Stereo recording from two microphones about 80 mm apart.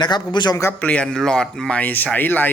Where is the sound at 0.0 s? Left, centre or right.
Left.